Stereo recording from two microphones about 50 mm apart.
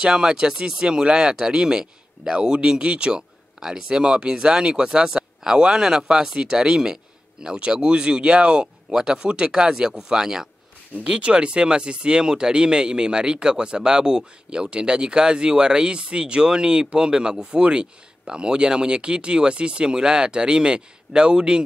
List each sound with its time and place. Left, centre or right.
0.0 s speech: centre